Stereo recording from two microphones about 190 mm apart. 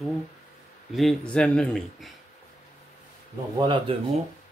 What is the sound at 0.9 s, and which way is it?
Speech, 5° left (ahead or behind).